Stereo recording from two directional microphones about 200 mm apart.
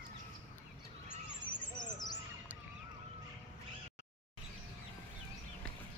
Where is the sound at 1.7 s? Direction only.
20° left (ahead or behind).